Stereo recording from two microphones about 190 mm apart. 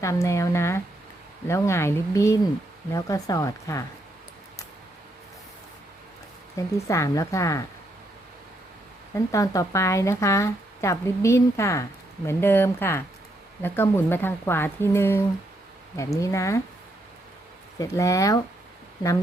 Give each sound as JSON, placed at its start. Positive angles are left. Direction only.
{"t": 0.0, "sound": "speech", "side_deg": 15}
{"t": 6.6, "sound": "speech", "side_deg": 15}
{"t": 9.1, "sound": "speech", "side_deg": 15}
{"t": 17.7, "sound": "speech", "side_deg": 15}